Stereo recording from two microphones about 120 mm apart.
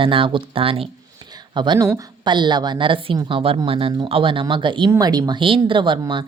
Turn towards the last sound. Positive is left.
turn(degrees=-40)  # may be behind; listen again after turning